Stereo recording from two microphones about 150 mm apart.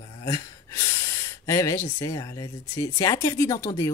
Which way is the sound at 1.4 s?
20° left (ahead or behind).